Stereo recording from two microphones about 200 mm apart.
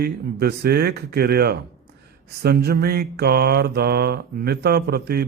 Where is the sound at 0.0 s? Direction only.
50° right (ahead or behind).